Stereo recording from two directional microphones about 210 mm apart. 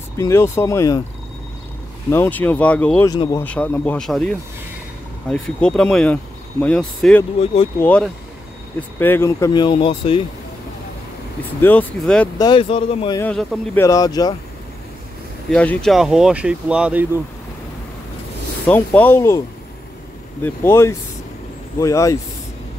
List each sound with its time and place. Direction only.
0.2 s speech: 10° left (ahead or behind)
2.0 s speech: 10° left (ahead or behind)
3.1 s speech: 20° left (ahead or behind)
3.4 s speech: 5° left (ahead or behind); by 10.2 s 25° left (ahead or behind)
11.6 s speech: 5° left (ahead or behind)
12.4 s speech: 20° left (ahead or behind)
13.2 s speech: 5° left (ahead or behind)
13.8 s speech: 15° left (ahead or behind)
15.5 s speech: 5° left (ahead or behind)
18.7 s speech: 5° left (ahead or behind)
20.4 s speech: 10° left (ahead or behind)